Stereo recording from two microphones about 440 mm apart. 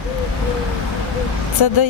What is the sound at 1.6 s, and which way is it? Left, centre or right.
Speech, left.